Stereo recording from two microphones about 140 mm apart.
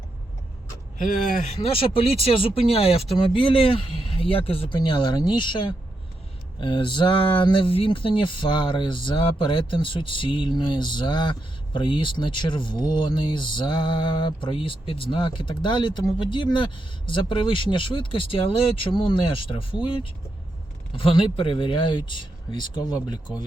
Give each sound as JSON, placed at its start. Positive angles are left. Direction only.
{"t": 0.9, "sound": "speech", "side_deg": 70}